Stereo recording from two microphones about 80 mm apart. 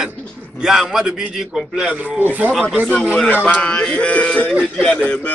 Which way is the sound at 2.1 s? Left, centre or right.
Right.